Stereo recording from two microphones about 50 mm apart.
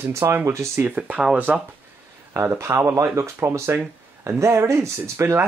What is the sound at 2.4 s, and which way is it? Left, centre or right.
Speech, right.